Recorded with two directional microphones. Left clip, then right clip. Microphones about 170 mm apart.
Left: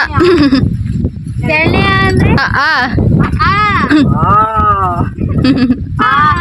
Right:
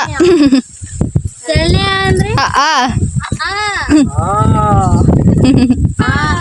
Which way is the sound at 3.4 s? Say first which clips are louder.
Left 5 dB; 20° right (ahead or behind).